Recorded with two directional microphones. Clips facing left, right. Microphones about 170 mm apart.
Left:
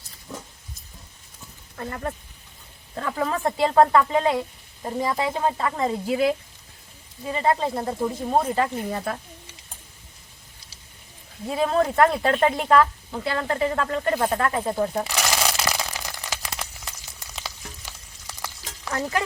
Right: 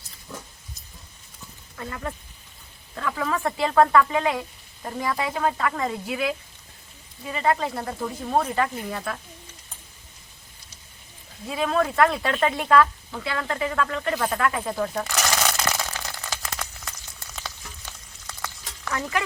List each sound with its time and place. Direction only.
1.7 s speech: 35° left (ahead or behind)
11.4 s speech: 35° left (ahead or behind)
15.0 s a sound: 10° left (ahead or behind)
17.8 s frying: 10° left (ahead or behind)
18.9 s speech: 35° left (ahead or behind)